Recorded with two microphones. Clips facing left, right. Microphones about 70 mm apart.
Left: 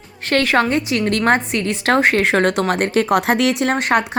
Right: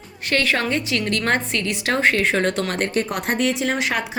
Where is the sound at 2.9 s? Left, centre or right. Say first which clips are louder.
Left 7 dB; left.